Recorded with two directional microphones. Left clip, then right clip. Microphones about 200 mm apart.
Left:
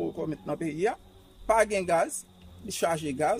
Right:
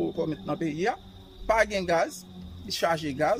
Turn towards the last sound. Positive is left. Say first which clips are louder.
# right 2 dB
turn(degrees=10)  # may be behind; listen again after turning